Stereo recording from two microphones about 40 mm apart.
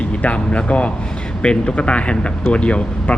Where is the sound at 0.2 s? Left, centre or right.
Left.